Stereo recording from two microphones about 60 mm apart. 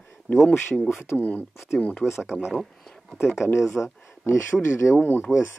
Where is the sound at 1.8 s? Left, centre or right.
Left.